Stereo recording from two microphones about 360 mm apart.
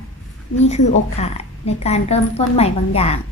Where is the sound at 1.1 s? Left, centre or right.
Centre.